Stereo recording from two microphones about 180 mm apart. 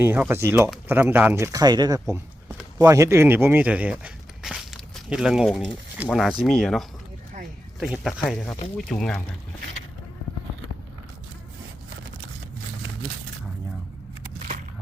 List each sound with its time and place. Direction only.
0.0 s speech: 10° right (ahead or behind)